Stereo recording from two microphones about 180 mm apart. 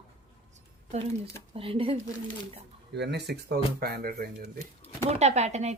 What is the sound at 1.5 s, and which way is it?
Speech, 30° right (ahead or behind).